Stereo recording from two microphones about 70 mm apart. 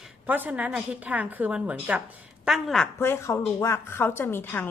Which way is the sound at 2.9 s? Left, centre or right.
Left.